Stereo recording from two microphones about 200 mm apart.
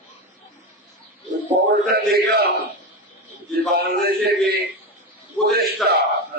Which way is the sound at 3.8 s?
50° right (ahead or behind).